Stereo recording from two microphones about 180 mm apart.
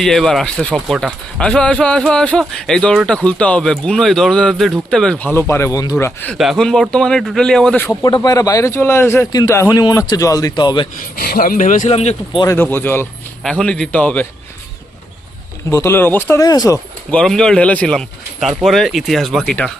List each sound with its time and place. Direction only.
0.0 s a man's voice: 5° left (ahead or behind)
6.3 s a man's voice: centre (ahead or behind)
7.9 s a man's voice: 20° left (ahead or behind)
11.2 s speech: 55° left (ahead or behind)
11.9 s speech: 35° left (ahead or behind)
12.4 s a man's voice: 15° left (ahead or behind)
15.7 s speech: 15° left (ahead or behind)
17.1 s a man's voice: 5° left (ahead or behind)